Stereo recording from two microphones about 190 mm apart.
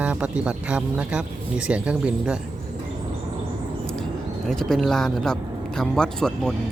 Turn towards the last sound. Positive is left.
turn(degrees=5)  # may be behind; listen again after turning